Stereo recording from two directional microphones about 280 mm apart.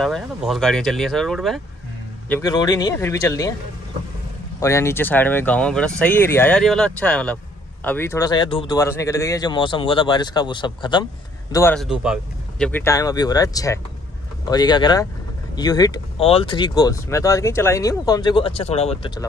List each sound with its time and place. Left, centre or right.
0.0 s speech: centre
4.6 s speech: centre
11.5 s speech: centre